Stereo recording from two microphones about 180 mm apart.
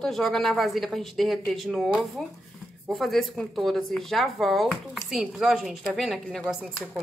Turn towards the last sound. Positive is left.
turn(degrees=0)  # may be behind; listen again after turning